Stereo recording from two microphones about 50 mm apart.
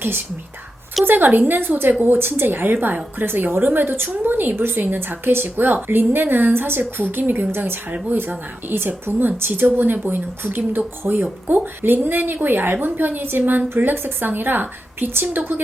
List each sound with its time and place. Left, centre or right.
1.0 s a woman's voice: right